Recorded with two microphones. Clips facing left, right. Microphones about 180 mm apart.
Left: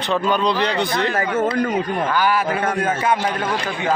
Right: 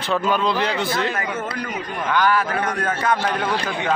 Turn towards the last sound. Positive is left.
turn(degrees=0)  # may be behind; listen again after turning